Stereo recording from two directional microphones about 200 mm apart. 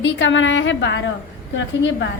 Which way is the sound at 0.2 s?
70° left (ahead or behind).